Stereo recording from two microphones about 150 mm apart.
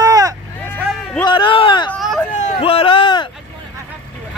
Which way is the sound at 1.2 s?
35° left (ahead or behind).